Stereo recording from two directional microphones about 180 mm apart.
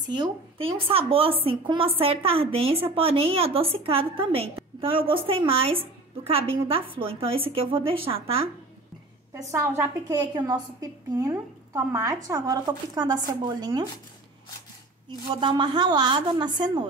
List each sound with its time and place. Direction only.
0.1 s a woman's voice: 25° right (ahead or behind)
9.3 s a woman's voice: 15° right (ahead or behind)
15.4 s a woman's voice: 25° right (ahead or behind)